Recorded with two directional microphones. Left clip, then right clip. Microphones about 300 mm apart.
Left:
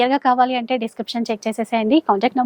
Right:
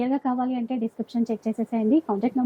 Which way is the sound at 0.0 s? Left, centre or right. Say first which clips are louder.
Left 10 dB; centre.